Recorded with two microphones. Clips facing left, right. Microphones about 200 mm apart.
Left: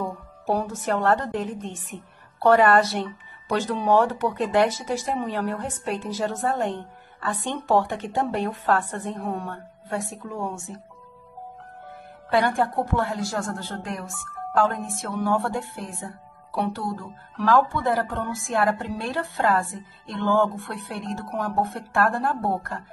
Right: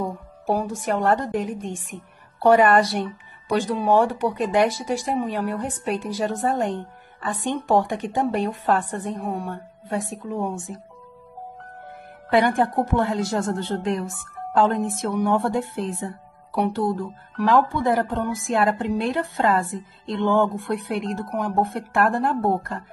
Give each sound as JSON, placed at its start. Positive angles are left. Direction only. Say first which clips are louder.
{"t": 0.7, "sound": "a woman's voice", "louder": "right 1 dB", "side_deg": -15}
{"t": 12.3, "sound": "a woman's voice", "louder": "right 3 dB", "side_deg": -20}